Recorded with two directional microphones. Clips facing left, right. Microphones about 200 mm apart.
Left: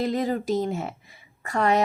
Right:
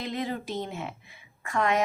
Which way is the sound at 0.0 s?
40° left (ahead or behind).